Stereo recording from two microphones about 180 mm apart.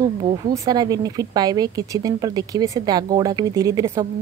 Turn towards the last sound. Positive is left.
turn(degrees=-15)  # may be behind; listen again after turning